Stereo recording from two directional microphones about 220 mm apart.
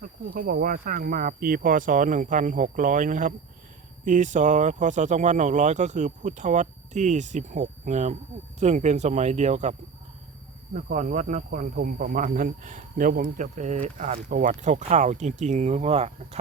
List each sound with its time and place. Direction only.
0.0 s speech: 40° right (ahead or behind)
10.8 s speech: 35° right (ahead or behind)